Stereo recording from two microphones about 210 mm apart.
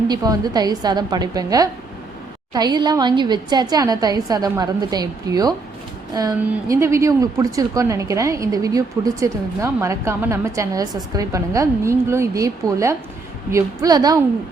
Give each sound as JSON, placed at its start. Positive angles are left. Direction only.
{"t": 0.1, "sound": "a woman's voice", "side_deg": -20}